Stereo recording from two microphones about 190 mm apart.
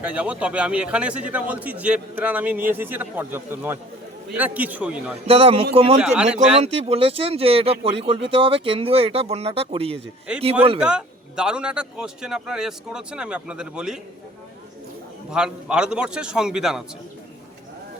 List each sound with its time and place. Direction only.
0.0 s a man's voice: 5° right (ahead or behind)
5.3 s speech: 30° right (ahead or behind)
10.3 s speech: 5° right (ahead or behind)
15.3 s speech: 5° right (ahead or behind)